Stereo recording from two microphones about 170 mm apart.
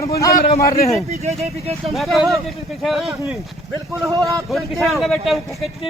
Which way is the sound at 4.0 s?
20° right (ahead or behind).